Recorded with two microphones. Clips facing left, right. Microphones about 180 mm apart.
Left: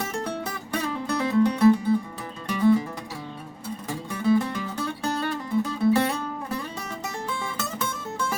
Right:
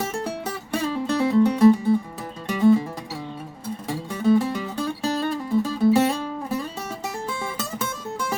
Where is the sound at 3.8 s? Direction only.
10° right (ahead or behind).